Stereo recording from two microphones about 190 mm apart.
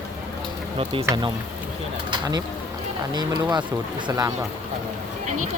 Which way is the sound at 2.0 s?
25° right (ahead or behind).